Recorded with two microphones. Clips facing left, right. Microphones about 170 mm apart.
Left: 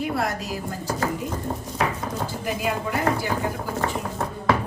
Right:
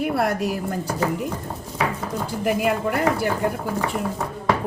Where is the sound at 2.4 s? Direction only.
60° right (ahead or behind).